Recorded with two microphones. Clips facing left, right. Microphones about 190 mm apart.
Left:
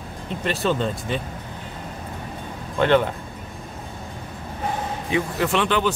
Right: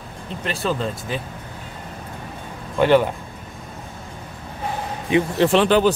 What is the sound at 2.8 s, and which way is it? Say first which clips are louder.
Speech: right 3 dB; 10° right (ahead or behind).